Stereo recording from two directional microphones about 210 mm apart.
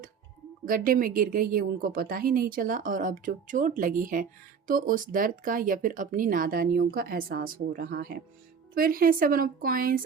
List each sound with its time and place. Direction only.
0.6 s a woman's voice: 40° right (ahead or behind)